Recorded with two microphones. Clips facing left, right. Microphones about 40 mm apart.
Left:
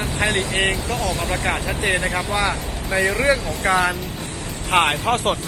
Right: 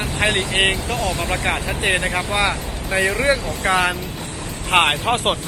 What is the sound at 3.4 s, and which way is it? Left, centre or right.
Speech, right.